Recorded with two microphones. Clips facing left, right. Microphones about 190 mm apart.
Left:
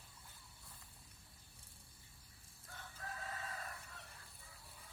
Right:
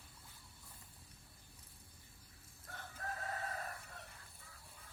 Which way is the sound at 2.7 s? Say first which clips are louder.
Right 3 dB; 65° right (ahead or behind).